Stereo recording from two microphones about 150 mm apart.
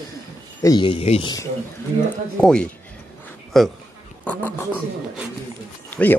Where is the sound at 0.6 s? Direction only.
30° left (ahead or behind).